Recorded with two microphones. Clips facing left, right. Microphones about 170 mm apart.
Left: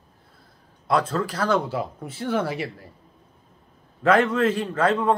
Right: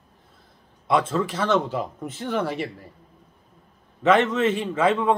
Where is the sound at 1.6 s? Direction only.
10° left (ahead or behind).